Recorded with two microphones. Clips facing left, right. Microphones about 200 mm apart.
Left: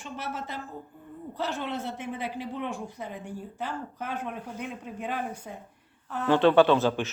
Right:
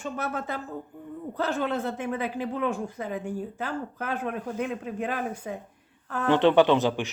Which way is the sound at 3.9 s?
90° right.